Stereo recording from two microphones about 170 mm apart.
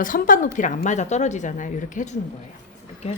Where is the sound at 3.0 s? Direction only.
40° left (ahead or behind).